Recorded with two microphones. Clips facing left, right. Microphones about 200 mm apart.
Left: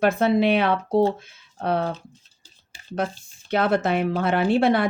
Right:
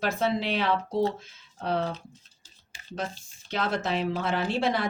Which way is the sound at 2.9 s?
55° left (ahead or behind).